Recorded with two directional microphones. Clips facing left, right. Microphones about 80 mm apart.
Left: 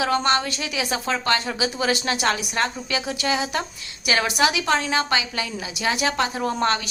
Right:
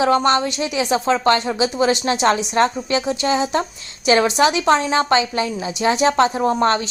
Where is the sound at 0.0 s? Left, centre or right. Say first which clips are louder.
Right 5 dB; right.